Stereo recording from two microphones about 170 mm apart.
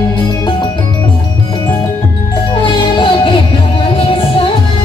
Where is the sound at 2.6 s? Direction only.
30° left (ahead or behind).